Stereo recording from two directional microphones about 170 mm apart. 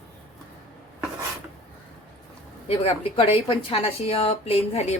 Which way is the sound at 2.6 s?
35° left (ahead or behind).